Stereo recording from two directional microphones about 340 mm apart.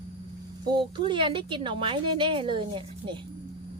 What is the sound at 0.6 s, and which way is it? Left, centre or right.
A woman's voice, centre.